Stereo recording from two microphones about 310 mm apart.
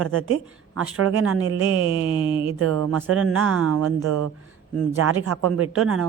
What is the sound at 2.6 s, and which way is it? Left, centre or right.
Speech, right.